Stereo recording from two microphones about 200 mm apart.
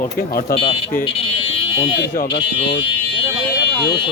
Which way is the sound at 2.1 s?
55° left (ahead or behind).